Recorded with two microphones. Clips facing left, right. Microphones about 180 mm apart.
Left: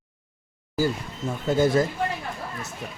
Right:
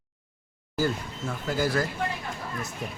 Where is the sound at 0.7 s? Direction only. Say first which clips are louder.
Left 2 dB; 10° left (ahead or behind).